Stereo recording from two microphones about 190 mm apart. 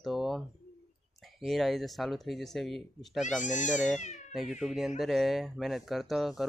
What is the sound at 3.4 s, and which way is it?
Speech, 40° left (ahead or behind).